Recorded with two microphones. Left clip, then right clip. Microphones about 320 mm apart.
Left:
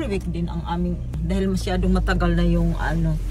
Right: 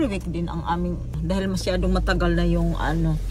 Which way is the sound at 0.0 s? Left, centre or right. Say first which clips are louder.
Right 1 dB; centre.